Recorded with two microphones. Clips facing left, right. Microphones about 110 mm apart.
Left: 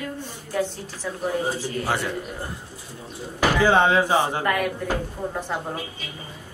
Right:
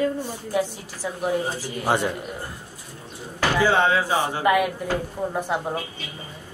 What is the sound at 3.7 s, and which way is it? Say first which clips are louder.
Speech: left 3 dB; 20° left (ahead or behind).